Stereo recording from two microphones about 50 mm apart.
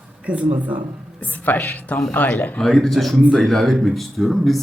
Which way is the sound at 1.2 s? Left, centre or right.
Left.